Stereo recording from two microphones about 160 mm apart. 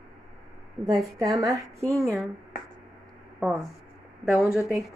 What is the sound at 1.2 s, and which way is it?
Speech, 20° right (ahead or behind).